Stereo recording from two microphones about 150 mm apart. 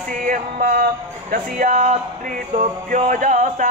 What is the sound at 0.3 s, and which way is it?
Male singing, 70° right (ahead or behind).